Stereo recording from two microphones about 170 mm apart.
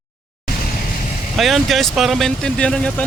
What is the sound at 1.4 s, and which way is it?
Speech, centre (ahead or behind).